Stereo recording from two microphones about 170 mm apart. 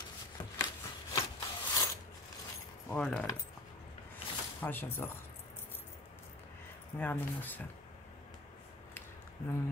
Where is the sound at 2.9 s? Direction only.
10° left (ahead or behind).